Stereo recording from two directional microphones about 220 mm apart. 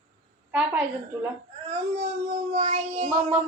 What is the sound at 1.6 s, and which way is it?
Speech, 30° right (ahead or behind).